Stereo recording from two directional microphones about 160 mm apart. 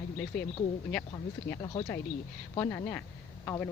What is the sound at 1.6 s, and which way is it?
Speech, 25° left (ahead or behind).